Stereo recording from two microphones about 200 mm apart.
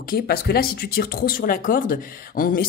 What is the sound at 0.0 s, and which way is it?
Speech, 50° left (ahead or behind).